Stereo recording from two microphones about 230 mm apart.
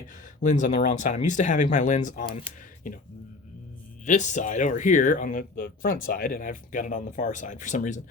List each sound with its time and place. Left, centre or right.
0.4 s speech: left
4.0 s speech: left